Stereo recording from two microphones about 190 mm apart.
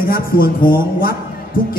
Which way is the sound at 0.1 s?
50° left (ahead or behind).